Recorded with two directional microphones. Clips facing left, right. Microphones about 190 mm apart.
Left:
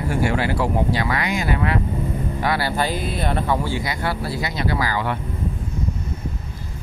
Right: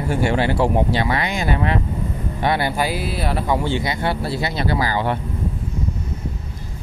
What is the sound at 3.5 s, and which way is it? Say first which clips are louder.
Speech: right 2 dB; 25° right (ahead or behind).